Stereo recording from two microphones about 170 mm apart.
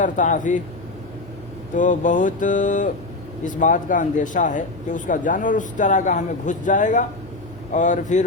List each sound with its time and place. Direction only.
0.0 s speech: 50° left (ahead or behind)
1.7 s speech: 50° left (ahead or behind)